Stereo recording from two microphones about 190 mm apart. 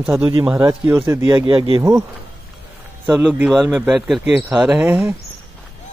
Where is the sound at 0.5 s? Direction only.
10° right (ahead or behind).